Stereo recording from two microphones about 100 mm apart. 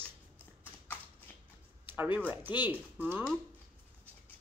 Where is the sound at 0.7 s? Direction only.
20° left (ahead or behind).